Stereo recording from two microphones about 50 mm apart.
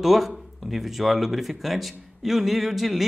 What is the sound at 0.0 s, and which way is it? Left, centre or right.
Speech, centre.